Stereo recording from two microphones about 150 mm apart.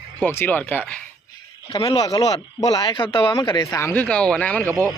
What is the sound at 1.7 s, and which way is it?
Speech, 30° left (ahead or behind).